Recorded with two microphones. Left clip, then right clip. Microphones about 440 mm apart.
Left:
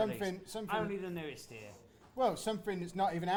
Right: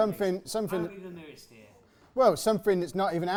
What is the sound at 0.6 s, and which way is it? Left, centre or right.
Speech, left.